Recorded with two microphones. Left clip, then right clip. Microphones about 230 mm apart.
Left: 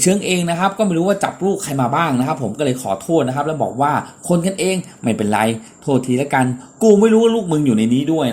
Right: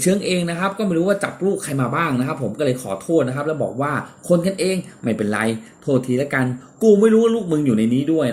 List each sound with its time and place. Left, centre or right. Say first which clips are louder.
0.3 s speech: left 4 dB; left